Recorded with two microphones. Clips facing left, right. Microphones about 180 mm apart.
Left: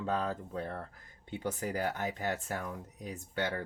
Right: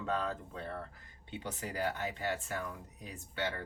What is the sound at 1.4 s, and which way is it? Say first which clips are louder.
Speech: left 3 dB; 50° left (ahead or behind).